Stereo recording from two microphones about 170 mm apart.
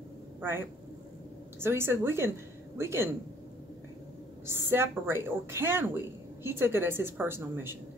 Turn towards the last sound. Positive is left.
turn(degrees=-15)  # may be behind; listen again after turning